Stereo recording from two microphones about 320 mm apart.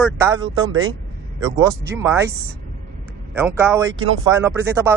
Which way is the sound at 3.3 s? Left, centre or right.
Centre.